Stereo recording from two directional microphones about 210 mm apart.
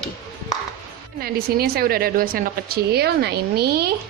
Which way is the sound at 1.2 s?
45° right (ahead or behind).